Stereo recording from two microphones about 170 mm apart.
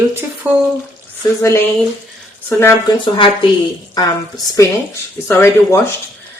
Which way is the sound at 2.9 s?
30° left (ahead or behind).